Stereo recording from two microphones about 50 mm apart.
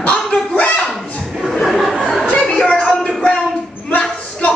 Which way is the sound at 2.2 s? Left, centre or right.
Left.